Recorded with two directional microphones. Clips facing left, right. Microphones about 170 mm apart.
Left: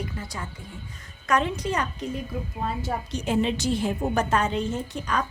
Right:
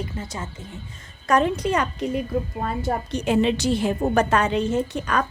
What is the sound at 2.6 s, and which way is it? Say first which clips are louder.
A woman's voice: right 4 dB; 55° right (ahead or behind).